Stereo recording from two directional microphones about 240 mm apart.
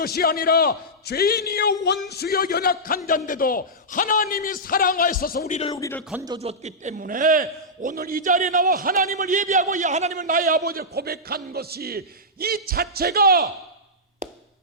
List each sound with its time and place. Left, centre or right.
0.0 s a man's voice: left
5.7 s speech: centre
6.2 s a man's voice: right